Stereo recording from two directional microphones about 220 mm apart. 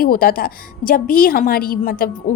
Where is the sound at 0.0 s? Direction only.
40° left (ahead or behind).